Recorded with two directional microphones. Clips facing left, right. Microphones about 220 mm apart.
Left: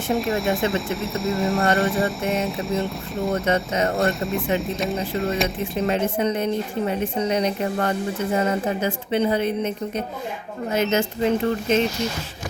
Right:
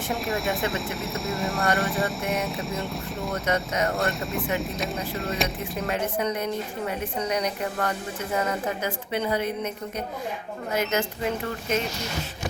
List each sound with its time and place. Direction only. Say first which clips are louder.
0.1 s speech: left 6 dB; centre (ahead or behind)
3.4 s a woman's voice: left 4 dB; 30° left (ahead or behind)
3.9 s speech: left 5 dB; centre (ahead or behind)
5.9 s a woman's voice: left 3 dB; 25° left (ahead or behind)